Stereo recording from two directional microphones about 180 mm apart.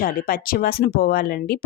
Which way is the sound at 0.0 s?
50° left (ahead or behind).